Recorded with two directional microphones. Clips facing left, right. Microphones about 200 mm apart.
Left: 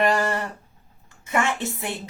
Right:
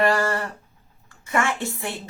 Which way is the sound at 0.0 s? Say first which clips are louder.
Right 1 dB; 20° left (ahead or behind).